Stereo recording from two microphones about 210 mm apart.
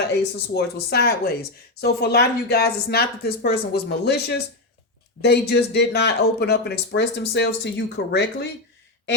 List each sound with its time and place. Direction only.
0.1 s speech: 50° left (ahead or behind)